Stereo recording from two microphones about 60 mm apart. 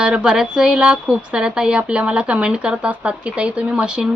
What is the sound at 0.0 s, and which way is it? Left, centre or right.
Speech, centre.